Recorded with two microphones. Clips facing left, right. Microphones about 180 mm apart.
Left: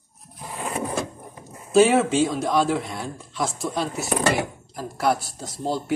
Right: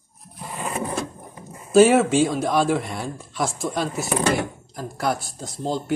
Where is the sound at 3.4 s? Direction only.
50° right (ahead or behind).